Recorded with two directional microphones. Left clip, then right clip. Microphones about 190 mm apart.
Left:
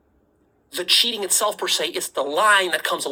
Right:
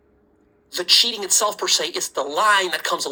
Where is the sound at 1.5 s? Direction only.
10° left (ahead or behind).